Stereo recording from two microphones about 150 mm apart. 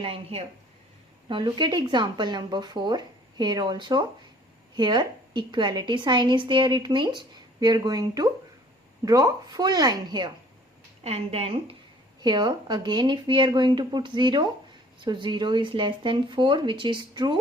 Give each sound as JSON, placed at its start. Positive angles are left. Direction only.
{"t": 0.0, "sound": "a woman's voice", "side_deg": -40}
{"t": 11.0, "sound": "speech", "side_deg": -40}
{"t": 12.2, "sound": "a woman's voice", "side_deg": -30}